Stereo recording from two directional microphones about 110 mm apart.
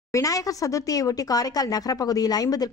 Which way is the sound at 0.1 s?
30° left (ahead or behind).